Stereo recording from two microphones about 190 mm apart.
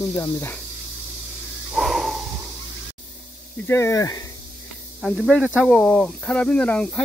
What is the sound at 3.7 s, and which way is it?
Speech, 15° left (ahead or behind).